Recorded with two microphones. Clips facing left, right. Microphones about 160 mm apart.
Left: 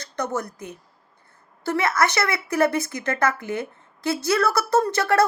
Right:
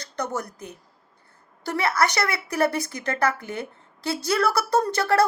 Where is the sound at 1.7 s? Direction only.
30° right (ahead or behind).